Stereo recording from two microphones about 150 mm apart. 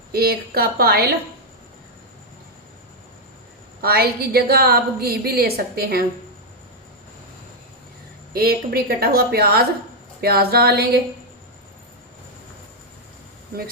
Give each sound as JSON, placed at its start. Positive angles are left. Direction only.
{"t": 0.1, "sound": "a woman's voice", "side_deg": -90}
{"t": 3.8, "sound": "a woman's voice", "side_deg": -90}
{"t": 8.3, "sound": "a woman's voice", "side_deg": -90}